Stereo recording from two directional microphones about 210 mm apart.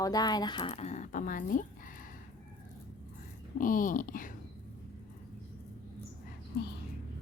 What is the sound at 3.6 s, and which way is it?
Speech, 40° left (ahead or behind).